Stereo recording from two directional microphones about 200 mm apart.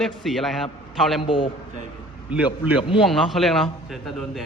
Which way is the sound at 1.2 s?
25° left (ahead or behind).